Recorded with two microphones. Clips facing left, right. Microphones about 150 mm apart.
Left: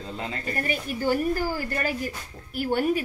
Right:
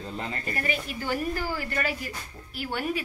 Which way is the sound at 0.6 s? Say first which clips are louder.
Left 3 dB; 45° left (ahead or behind).